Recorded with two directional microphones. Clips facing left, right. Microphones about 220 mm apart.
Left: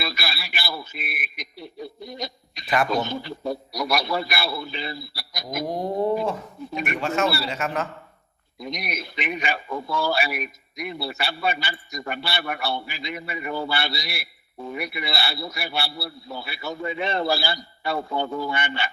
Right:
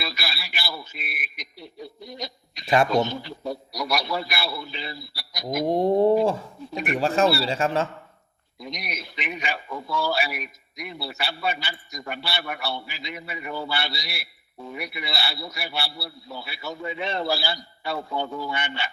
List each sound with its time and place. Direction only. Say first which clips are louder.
0.0 s a sound: left 2 dB; 55° left (ahead or behind)
2.6 s a man's voice: right 3 dB; 25° right (ahead or behind)
3.2 s radio: left 3 dB; 50° left (ahead or behind)
5.6 s a sound: right 6 dB; 25° right (ahead or behind)
6.9 s a man's voice: right 4 dB; 35° right (ahead or behind)
8.5 s a man's voice: left 4 dB; 55° left (ahead or behind)